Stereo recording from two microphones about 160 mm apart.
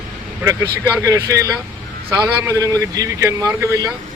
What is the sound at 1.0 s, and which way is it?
Speech, 20° right (ahead or behind).